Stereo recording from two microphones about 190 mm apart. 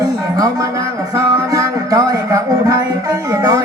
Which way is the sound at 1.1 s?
20° right (ahead or behind).